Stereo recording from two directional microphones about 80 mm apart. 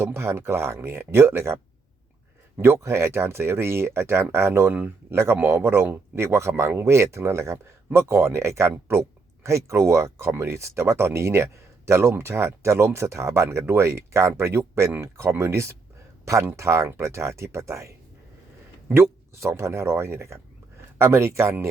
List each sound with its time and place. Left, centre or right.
0.0 s speech: right
2.6 s speech: right
18.9 s speech: right